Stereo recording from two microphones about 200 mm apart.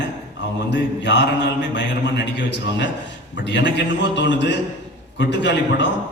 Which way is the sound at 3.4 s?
60° left (ahead or behind).